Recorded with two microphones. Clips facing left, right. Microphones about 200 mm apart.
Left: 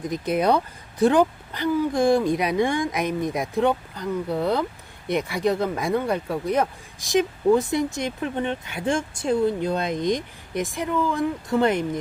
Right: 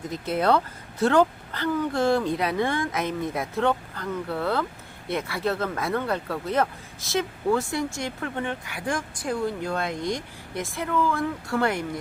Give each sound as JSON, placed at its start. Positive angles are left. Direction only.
{"t": 0.0, "sound": "speech", "side_deg": 15}